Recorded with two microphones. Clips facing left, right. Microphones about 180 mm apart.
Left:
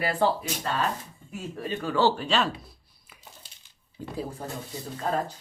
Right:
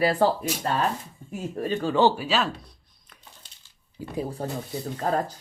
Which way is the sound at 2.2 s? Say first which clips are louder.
Even; centre (ahead or behind).